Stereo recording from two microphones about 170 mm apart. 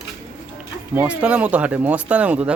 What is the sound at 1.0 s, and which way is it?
A man's voice, 5° right (ahead or behind).